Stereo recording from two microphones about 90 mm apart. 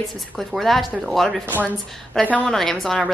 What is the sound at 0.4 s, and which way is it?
A woman's voice, 5° left (ahead or behind).